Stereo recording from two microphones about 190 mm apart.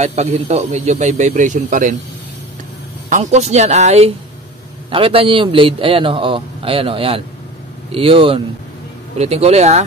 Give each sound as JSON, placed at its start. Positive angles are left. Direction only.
{"t": 0.0, "sound": "speech", "side_deg": -35}
{"t": 3.1, "sound": "a man's voice", "side_deg": -35}